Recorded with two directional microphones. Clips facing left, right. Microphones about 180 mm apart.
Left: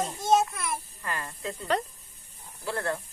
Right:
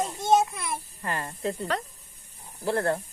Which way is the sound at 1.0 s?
35° right (ahead or behind).